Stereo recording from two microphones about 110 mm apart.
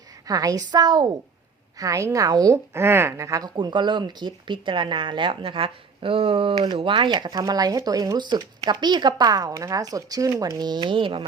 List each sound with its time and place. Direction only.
0.3 s speech: 35° right (ahead or behind)
1.8 s speech: 30° right (ahead or behind)
2.7 s speech: 20° right (ahead or behind)
3.5 s speech: 45° right (ahead or behind)